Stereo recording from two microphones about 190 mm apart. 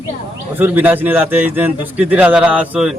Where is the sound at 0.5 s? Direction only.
10° right (ahead or behind).